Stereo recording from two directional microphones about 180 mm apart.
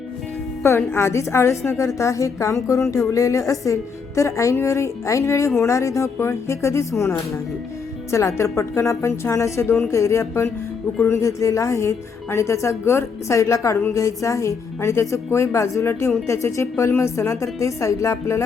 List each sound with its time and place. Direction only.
0.6 s speech: 15° left (ahead or behind)
8.1 s speech: 15° left (ahead or behind)